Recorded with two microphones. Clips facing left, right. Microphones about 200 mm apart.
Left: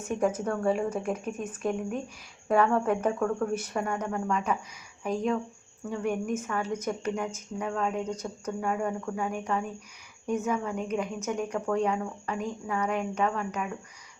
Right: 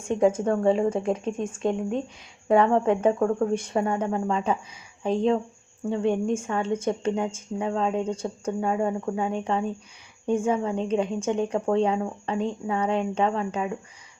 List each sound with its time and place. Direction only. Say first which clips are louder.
0.0 s speech: right 6 dB; 25° right (ahead or behind)